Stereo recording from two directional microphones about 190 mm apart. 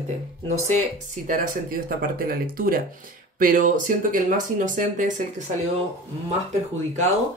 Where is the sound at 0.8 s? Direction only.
45° right (ahead or behind).